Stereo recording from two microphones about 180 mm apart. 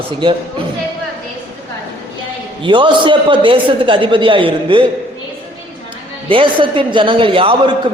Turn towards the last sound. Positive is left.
turn(degrees=-30)  # may be behind; listen again after turning